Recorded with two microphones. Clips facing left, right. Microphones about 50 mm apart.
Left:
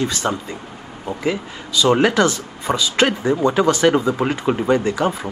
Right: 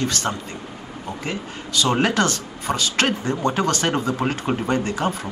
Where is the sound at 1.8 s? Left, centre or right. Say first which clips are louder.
Left 5 dB; centre.